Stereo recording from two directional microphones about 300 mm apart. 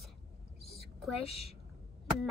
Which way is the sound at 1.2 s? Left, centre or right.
Centre.